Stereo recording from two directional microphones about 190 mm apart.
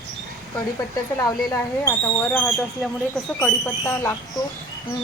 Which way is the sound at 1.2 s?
15° left (ahead or behind).